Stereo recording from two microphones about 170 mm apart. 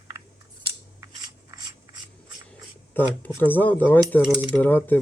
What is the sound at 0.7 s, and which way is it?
Scissors, 20° right (ahead or behind).